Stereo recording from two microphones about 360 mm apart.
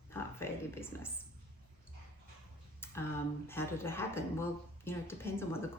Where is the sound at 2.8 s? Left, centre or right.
Centre.